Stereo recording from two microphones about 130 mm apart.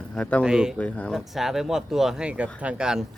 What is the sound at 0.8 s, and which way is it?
Speech, 10° left (ahead or behind).